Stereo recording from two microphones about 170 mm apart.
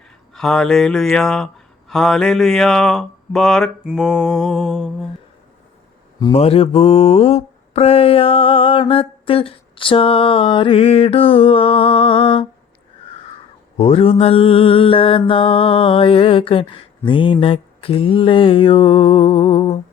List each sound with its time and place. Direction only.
0.3 s speech: 5° left (ahead or behind)
6.3 s mantra: 35° left (ahead or behind)
13.7 s mantra: 35° left (ahead or behind)